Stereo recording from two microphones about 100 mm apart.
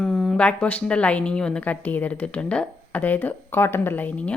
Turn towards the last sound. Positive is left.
turn(degrees=20)  # may be behind; listen again after turning